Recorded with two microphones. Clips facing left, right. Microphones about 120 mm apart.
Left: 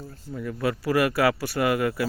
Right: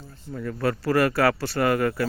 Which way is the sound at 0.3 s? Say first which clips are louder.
Right 1 dB; 10° left (ahead or behind).